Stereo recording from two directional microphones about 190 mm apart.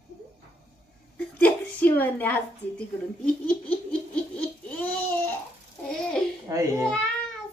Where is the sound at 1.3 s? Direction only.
10° left (ahead or behind).